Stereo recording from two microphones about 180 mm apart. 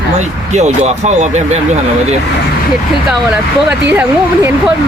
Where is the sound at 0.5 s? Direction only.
40° right (ahead or behind).